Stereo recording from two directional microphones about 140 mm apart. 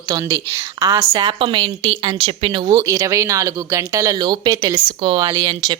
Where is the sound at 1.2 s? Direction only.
40° right (ahead or behind).